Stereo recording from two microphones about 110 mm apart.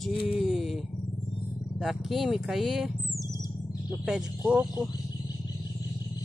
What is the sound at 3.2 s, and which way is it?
Bird, 30° right (ahead or behind).